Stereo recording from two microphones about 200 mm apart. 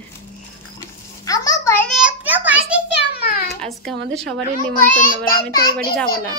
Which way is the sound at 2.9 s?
55° left (ahead or behind).